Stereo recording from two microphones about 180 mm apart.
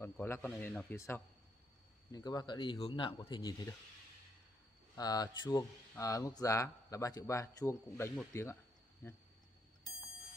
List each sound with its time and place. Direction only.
0.0 s speech: 10° left (ahead or behind)
4.9 s speech: 20° left (ahead or behind)